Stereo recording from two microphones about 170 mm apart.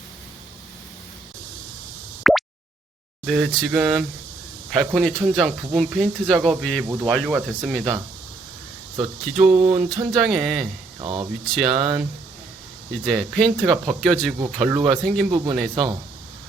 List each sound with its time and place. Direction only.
2.3 s a sound: centre (ahead or behind)
3.2 s speech: 5° right (ahead or behind)
9.2 s speech: 5° right (ahead or behind)
11.0 s speech: 30° right (ahead or behind)
11.4 s speech: centre (ahead or behind)